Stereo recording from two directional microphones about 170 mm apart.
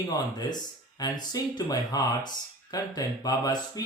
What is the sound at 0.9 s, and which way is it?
Speech, 25° left (ahead or behind).